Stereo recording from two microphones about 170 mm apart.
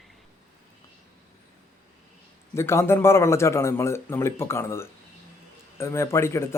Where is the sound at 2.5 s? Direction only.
15° left (ahead or behind).